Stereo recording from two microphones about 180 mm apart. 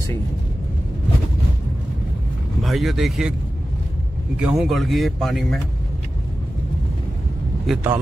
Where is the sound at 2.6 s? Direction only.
Centre (ahead or behind).